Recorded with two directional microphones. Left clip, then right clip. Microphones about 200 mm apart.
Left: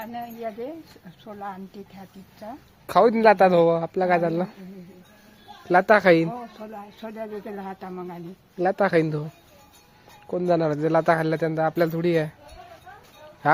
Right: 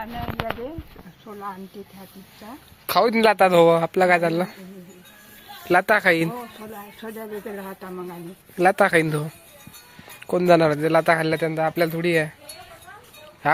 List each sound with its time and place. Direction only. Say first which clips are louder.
1.3 s speech: right 1 dB; 20° left (ahead or behind)
2.8 s speech: left 1 dB; 5° left (ahead or behind)
5.6 s speech: left 1 dB; 5° left (ahead or behind)
7.0 s speech: right 1 dB; 25° left (ahead or behind)
8.5 s speech: right 4 dB; 5° right (ahead or behind)
10.7 s speech: right 2 dB; 10° left (ahead or behind)
13.4 s speech: even; 20° left (ahead or behind)